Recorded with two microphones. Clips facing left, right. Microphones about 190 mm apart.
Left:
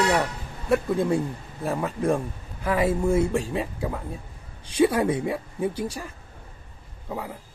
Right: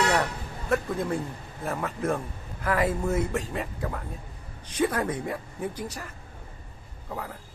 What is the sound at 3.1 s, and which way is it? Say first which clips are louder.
Speech: left 5 dB; 30° left (ahead or behind).